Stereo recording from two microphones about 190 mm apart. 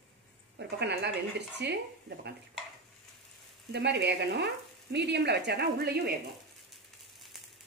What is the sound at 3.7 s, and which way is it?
Frying, 60° right (ahead or behind).